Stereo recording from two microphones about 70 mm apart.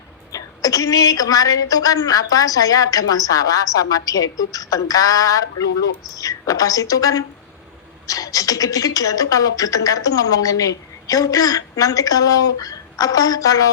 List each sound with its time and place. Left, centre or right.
0.3 s speech: left